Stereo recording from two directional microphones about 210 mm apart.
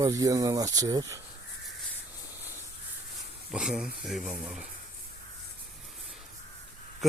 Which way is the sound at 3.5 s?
5° right (ahead or behind).